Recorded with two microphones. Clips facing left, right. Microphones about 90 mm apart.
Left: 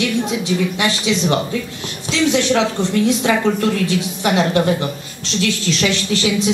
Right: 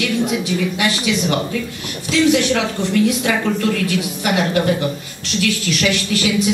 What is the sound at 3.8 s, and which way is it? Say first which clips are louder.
Speech: left 1 dB; 30° left (ahead or behind).